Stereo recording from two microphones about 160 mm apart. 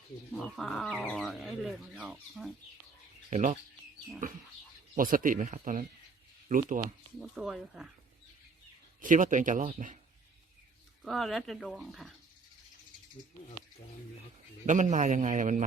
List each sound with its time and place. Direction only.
0.3 s speech: centre (ahead or behind)
3.2 s speech: 50° right (ahead or behind)
4.9 s speech: 60° right (ahead or behind)
7.2 s speech: centre (ahead or behind)
9.0 s speech: 55° right (ahead or behind)
11.0 s speech: centre (ahead or behind)
14.7 s speech: 50° right (ahead or behind)